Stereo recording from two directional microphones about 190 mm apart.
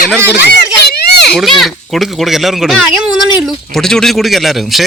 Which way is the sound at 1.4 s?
Centre (ahead or behind).